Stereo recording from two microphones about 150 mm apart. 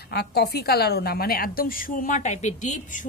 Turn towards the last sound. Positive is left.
turn(degrees=55)  # may be behind; listen again after turning